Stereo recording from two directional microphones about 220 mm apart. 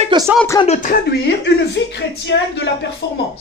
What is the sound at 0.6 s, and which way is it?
Speech, 35° left (ahead or behind).